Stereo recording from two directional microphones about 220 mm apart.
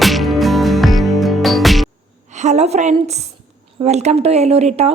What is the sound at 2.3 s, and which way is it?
A woman's voice, 30° right (ahead or behind).